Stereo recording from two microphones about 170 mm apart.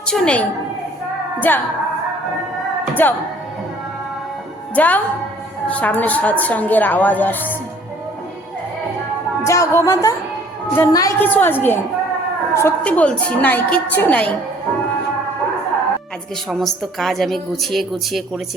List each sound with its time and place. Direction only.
0.1 s a woman's voice: 5° left (ahead or behind)
2.9 s speech: 10° left (ahead or behind)
4.7 s a woman's voice: 10° left (ahead or behind)
9.4 s a woman's voice: 15° left (ahead or behind)
16.5 s a woman's voice: centre (ahead or behind)